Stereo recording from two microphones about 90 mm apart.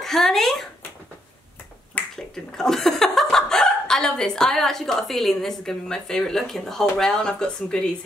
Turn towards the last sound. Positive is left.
turn(degrees=10)  # may be behind; listen again after turning